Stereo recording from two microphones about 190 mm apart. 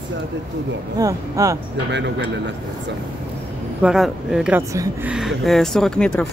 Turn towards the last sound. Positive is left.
turn(degrees=5)  # may be behind; listen again after turning